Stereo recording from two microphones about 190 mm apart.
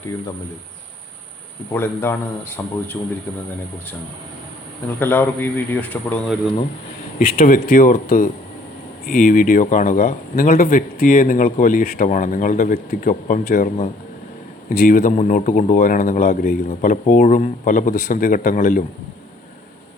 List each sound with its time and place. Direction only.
1.7 s a man's voice: 10° left (ahead or behind)
4.9 s a man's voice: 10° left (ahead or behind)
7.2 s speech: 50° left (ahead or behind)